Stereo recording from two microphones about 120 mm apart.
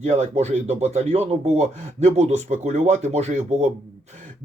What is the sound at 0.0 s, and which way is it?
Speech, 75° right (ahead or behind).